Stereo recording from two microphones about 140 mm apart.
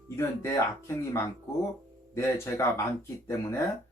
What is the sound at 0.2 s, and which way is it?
Speech, 20° left (ahead or behind).